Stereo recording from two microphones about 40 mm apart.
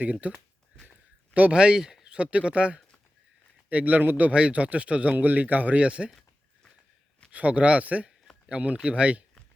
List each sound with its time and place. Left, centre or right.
0.0 s a man's voice: right
1.5 s speech: centre
2.0 s speech: right
3.7 s a man's voice: right
5.1 s speech: right
5.8 s speech: right
7.3 s a man's voice: right